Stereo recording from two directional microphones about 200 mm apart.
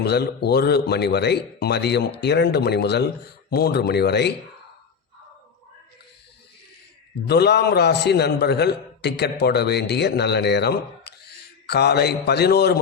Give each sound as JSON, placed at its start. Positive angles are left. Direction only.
{"t": 0.0, "sound": "speech", "side_deg": 55}
{"t": 7.3, "sound": "a man's voice", "side_deg": 55}